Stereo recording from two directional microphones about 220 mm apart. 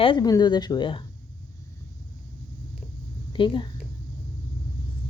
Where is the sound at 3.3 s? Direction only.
20° left (ahead or behind).